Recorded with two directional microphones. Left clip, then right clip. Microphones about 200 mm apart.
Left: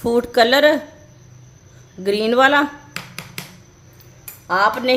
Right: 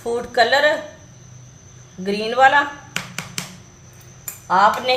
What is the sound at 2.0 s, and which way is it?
Speech, 50° left (ahead or behind).